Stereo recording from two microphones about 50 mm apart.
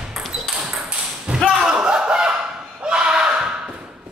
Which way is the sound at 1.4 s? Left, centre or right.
Centre.